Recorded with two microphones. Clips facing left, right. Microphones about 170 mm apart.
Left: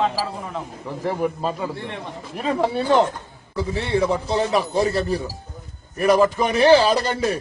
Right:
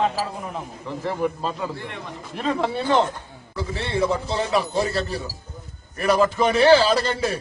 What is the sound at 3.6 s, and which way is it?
Speech, 15° left (ahead or behind).